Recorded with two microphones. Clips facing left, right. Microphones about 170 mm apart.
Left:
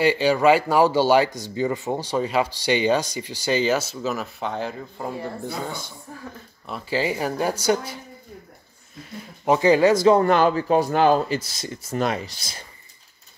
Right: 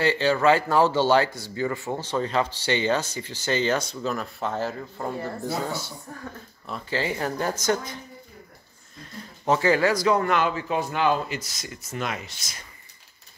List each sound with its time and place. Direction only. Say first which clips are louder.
0.0 s speech: left 3 dB; 15° left (ahead or behind)
6.7 s speech: left 3 dB; 10° left (ahead or behind)
9.4 s speech: left 4 dB; 15° left (ahead or behind); by 12.6 s 30° left (ahead or behind)